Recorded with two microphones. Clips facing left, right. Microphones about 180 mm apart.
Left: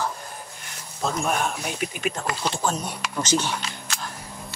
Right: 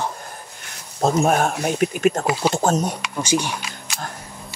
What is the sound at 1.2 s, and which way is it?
Speech, 45° right (ahead or behind).